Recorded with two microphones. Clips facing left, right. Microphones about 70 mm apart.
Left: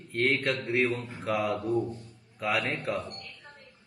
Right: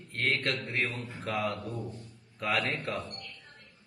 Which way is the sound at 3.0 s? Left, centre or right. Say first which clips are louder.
Left 2 dB; left.